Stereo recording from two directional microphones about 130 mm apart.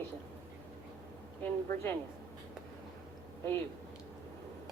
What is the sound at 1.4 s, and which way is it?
Speech, 20° left (ahead or behind).